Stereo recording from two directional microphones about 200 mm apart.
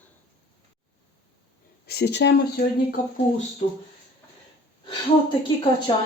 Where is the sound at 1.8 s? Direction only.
55° left (ahead or behind).